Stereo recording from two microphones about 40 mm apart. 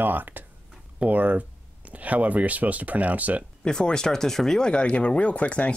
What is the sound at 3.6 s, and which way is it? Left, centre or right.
Speech, centre.